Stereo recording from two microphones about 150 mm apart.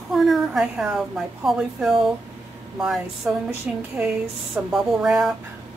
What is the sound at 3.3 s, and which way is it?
A woman's voice, 5° right (ahead or behind).